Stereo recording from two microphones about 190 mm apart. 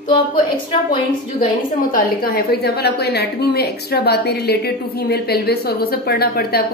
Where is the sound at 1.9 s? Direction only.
55° left (ahead or behind).